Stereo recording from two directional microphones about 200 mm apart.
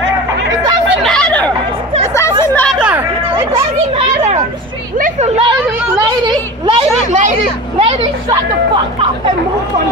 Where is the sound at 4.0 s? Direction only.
35° right (ahead or behind).